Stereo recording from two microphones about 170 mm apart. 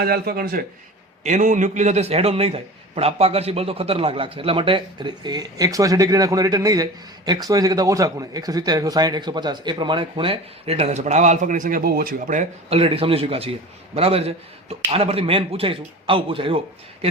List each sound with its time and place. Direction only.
0.0 s speech: 65° right (ahead or behind)
1.2 s a man's voice: 45° right (ahead or behind)
12.8 s a man's voice: 35° right (ahead or behind)